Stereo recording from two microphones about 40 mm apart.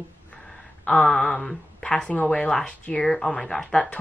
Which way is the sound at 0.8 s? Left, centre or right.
Centre.